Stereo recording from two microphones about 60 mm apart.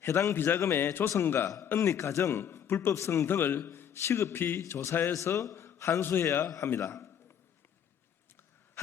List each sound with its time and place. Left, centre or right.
0.0 s a man's voice: left
0.3 s a man's voice: left
1.8 s a man's voice: left
2.9 s a man's voice: left
3.2 s a man's voice: left
5.1 s a man's voice: left
6.0 s a man's voice: left
6.2 s a man's voice: left